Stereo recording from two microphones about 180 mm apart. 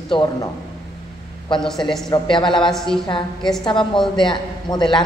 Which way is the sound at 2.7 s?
Centre (ahead or behind).